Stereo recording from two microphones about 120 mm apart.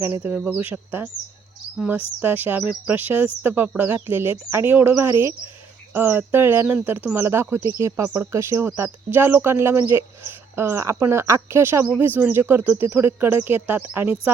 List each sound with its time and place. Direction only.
0.0 s speech: 15° right (ahead or behind)